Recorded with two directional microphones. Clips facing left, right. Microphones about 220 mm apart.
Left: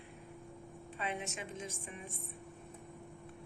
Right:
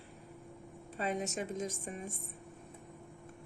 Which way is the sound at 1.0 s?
40° right (ahead or behind).